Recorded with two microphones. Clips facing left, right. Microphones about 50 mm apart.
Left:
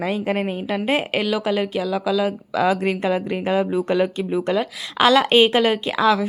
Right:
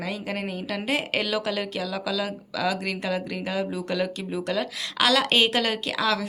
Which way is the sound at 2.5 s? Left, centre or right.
Left.